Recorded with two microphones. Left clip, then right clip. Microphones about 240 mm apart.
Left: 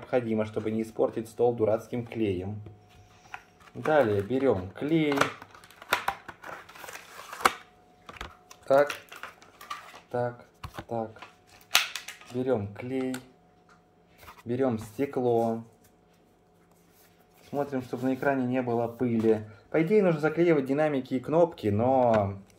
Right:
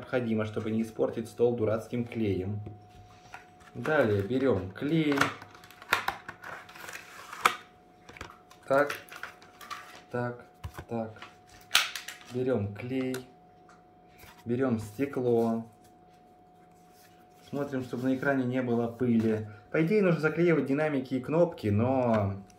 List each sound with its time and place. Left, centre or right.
0.0 s speech: left
3.8 s a sound: left
8.2 s typing: left
9.7 s cutlery: left
10.8 s shuffling cards: left
12.4 s speech: left
14.5 s speech: left
17.5 s speech: left